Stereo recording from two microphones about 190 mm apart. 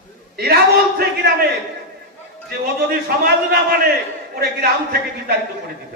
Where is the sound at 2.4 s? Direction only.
55° right (ahead or behind).